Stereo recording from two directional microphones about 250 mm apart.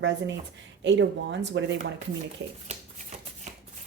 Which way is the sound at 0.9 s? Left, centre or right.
Right.